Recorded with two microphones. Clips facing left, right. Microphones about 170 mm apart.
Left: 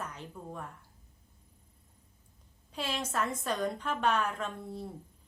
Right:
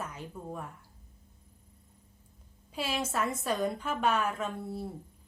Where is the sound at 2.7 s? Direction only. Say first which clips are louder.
Right 2 dB; 5° right (ahead or behind).